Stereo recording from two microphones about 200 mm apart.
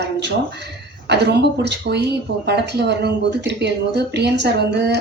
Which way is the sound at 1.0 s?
55° right (ahead or behind).